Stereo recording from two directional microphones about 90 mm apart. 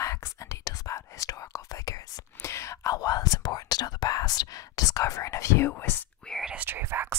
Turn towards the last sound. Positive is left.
turn(degrees=-25)  # may be behind; listen again after turning